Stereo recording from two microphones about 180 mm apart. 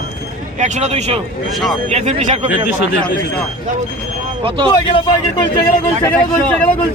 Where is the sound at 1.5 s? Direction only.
Centre (ahead or behind).